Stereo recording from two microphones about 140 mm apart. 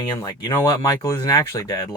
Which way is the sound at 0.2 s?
25° left (ahead or behind).